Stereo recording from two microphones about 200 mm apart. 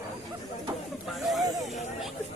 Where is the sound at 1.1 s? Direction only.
Centre (ahead or behind).